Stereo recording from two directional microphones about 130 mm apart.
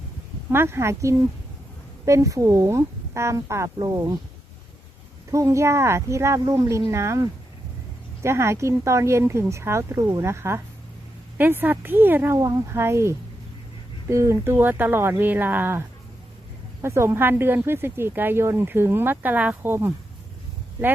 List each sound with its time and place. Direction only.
0.5 s speech: 20° right (ahead or behind)
5.3 s speech: 25° right (ahead or behind)
12.4 s speech: 25° right (ahead or behind)
16.8 s speech: 20° right (ahead or behind)